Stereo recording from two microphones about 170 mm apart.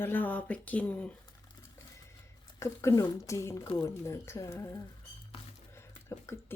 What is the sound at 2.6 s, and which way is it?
Speech, 15° left (ahead or behind).